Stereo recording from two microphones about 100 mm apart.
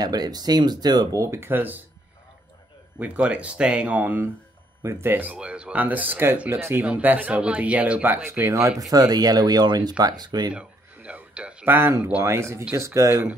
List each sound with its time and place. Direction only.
0.0 s speech: 40° right (ahead or behind); by 1.8 s 20° right (ahead or behind)
3.0 s speech: 15° right (ahead or behind)
8.3 s speech: 25° right (ahead or behind); by 10.5 s 45° right (ahead or behind)
10.5 s speech: 10° right (ahead or behind); by 13.2 s 30° right (ahead or behind)